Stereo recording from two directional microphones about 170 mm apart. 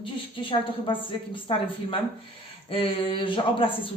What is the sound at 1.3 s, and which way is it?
Speech, 30° left (ahead or behind).